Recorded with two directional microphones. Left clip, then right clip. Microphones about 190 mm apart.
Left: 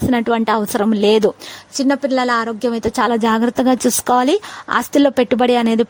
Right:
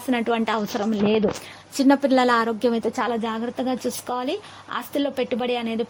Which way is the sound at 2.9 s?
40° left (ahead or behind).